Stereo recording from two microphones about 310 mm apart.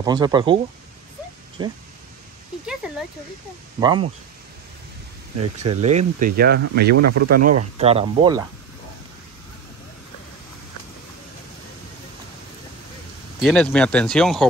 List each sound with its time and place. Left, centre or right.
0.0 s speech: centre
1.6 s speech: centre
2.8 s speech: centre
5.4 s speech: right
7.0 s speech: right
7.7 s speech: centre
13.4 s speech: centre